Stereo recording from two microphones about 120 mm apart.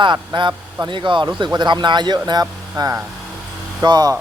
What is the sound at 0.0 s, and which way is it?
Speech, 40° right (ahead or behind).